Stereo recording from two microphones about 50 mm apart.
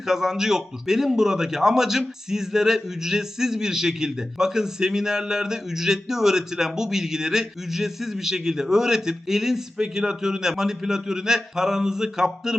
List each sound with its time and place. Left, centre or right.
0.0 s a man's voice: centre